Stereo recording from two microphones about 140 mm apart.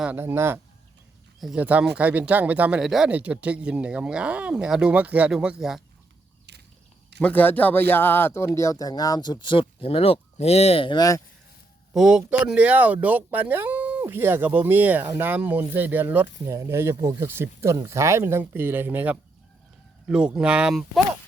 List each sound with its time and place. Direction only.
0.0 s speech: 15° right (ahead or behind)
7.2 s speech: 10° left (ahead or behind); by 11.2 s 30° left (ahead or behind)
11.9 s speech: 5° right (ahead or behind)